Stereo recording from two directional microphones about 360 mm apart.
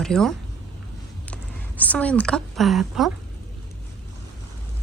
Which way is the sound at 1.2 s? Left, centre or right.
Centre.